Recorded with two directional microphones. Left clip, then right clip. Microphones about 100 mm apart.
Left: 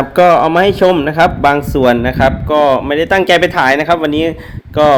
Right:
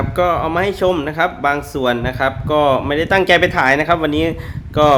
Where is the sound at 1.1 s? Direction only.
35° left (ahead or behind).